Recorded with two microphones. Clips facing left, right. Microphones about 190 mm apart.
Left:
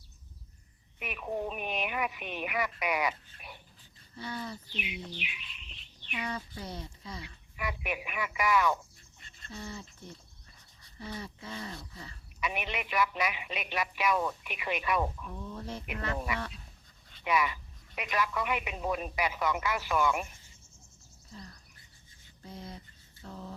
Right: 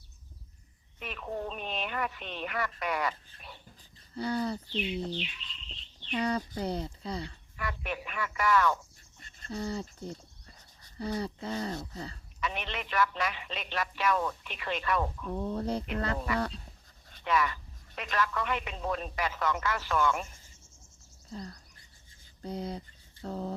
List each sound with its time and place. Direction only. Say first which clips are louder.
0.9 s speech: left 1 dB; 10° left (ahead or behind)
4.1 s speech: right 8 dB; 35° right (ahead or behind)
4.7 s speech: right 8 dB; 10° left (ahead or behind)
5.1 s a sound: right 6 dB; 10° left (ahead or behind)
6.1 s speech: right 7 dB; 40° right (ahead or behind)
7.5 s speech: left 1 dB; 10° left (ahead or behind)
9.2 s speech: right 7 dB; 40° right (ahead or behind)
12.4 s speech: left 1 dB; 10° left (ahead or behind)
15.3 s speech: right 8 dB; 45° right (ahead or behind)
16.1 s speech: right 4 dB; 10° left (ahead or behind)
22.4 s speech: right 9 dB; 35° right (ahead or behind)
23.2 s a sound: right 8 dB; 40° right (ahead or behind)